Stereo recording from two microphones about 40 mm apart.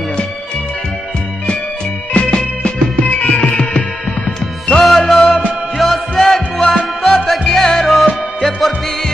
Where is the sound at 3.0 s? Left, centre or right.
Left.